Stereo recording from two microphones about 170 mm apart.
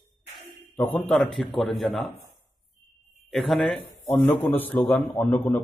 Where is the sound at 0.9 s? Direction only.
Centre (ahead or behind).